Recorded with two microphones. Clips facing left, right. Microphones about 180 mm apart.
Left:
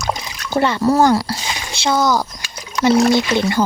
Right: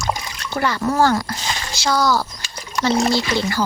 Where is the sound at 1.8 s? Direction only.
20° left (ahead or behind).